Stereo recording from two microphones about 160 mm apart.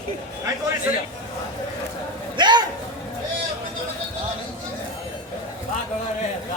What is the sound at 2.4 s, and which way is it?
Music, 25° right (ahead or behind).